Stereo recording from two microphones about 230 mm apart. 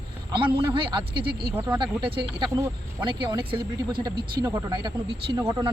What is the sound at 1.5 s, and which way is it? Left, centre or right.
Speech, centre.